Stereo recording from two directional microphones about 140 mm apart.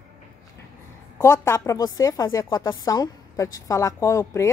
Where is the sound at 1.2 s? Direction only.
20° left (ahead or behind).